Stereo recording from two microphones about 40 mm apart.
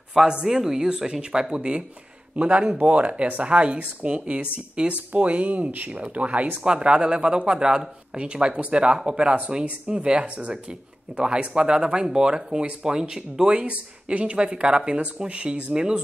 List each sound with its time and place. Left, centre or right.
0.2 s speech: centre
0.5 s speech: centre
2.3 s speech: right; by 13.6 s centre
13.6 s speech: right
15.7 s speech: centre